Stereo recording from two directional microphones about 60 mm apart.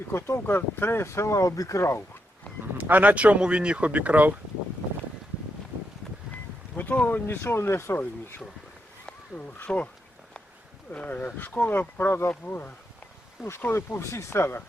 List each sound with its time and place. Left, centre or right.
0.1 s speech: left
1.8 s speech: left
2.7 s speech: right
6.7 s speech: left
7.4 s speech: left
9.6 s speech: left
10.9 s speech: left